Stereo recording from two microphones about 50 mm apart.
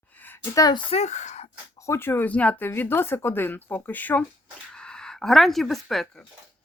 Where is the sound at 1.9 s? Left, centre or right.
Left.